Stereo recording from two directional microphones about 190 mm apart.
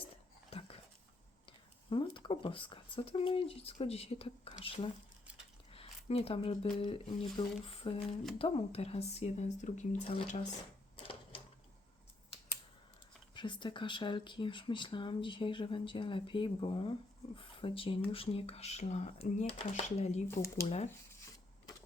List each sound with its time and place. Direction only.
0.5 s dog: 30° left (ahead or behind)
1.5 s speech: 25° left (ahead or behind)
13.3 s speech: 25° left (ahead or behind)
20.2 s speech: 15° left (ahead or behind)
20.7 s speech: 35° left (ahead or behind)